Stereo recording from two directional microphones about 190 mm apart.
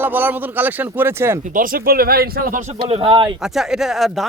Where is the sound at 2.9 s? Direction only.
30° right (ahead or behind).